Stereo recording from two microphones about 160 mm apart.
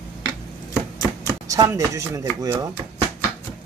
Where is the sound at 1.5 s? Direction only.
20° right (ahead or behind).